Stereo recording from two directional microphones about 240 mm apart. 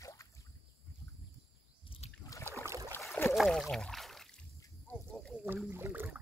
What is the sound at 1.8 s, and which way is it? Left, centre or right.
Trickle, left.